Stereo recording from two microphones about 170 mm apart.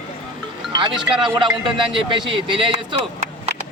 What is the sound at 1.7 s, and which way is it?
A man's voice, 30° right (ahead or behind).